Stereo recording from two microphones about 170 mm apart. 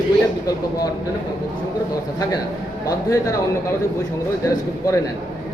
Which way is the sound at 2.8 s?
20° left (ahead or behind).